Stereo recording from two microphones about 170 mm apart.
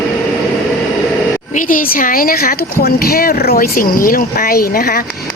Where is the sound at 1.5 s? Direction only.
50° left (ahead or behind).